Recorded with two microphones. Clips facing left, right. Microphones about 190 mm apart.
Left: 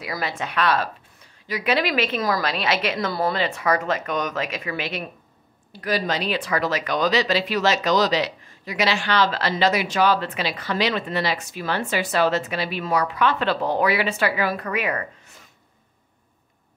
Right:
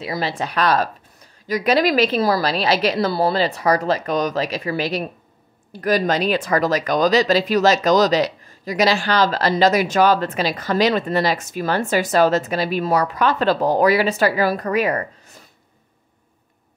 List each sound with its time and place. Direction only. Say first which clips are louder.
0.0 s speech: right 4 dB; 30° right (ahead or behind)